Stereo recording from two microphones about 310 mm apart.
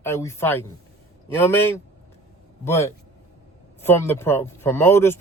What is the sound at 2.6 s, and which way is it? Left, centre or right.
Speech, centre.